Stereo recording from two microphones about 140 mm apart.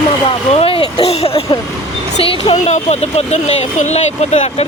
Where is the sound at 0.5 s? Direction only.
40° left (ahead or behind).